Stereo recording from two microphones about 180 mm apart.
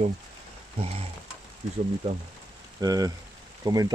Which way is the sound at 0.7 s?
35° right (ahead or behind).